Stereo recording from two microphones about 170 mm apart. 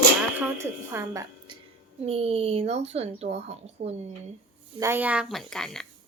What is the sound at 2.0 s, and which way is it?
Speech, 35° right (ahead or behind).